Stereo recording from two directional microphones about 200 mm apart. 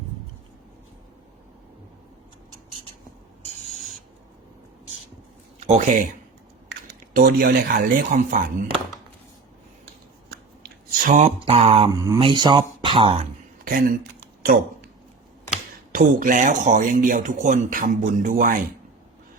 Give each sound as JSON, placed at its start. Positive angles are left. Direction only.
{"t": 5.5, "sound": "speech", "side_deg": -35}
{"t": 6.7, "sound": "speech", "side_deg": -50}
{"t": 11.0, "sound": "a sound", "side_deg": -40}
{"t": 11.3, "sound": "mantra", "side_deg": -30}
{"t": 11.9, "sound": "mantra", "side_deg": -15}
{"t": 12.8, "sound": "speech", "side_deg": -25}
{"t": 13.7, "sound": "speech", "side_deg": -45}
{"t": 15.9, "sound": "speech", "side_deg": -45}